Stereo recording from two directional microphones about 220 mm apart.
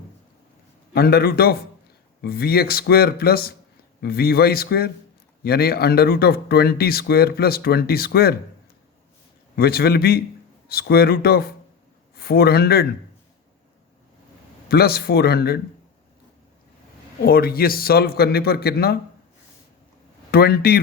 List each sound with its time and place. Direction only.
0.9 s speech: 45° left (ahead or behind)
9.6 s speech: 45° left (ahead or behind)
14.7 s speech: 45° left (ahead or behind)
17.2 s speech: 40° left (ahead or behind)
20.3 s speech: 45° left (ahead or behind)